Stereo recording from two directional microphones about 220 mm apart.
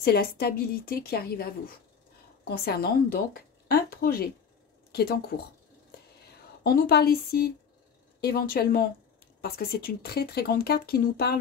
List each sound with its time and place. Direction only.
0.0 s speech: 45° left (ahead or behind)
6.6 s speech: 45° left (ahead or behind)